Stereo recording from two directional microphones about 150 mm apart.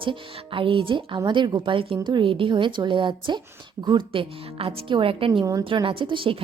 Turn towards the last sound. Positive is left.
turn(degrees=-35)  # may be behind; listen again after turning